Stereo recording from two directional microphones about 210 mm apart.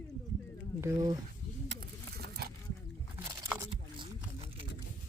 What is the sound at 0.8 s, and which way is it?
Speech, 20° right (ahead or behind).